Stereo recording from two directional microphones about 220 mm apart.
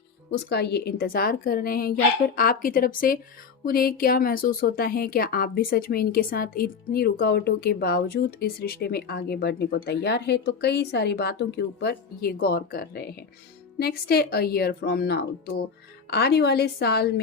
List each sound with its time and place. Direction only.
0.3 s a woman's voice: 50° left (ahead or behind)